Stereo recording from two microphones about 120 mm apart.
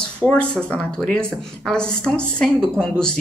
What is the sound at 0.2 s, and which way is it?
A woman's voice, 10° left (ahead or behind).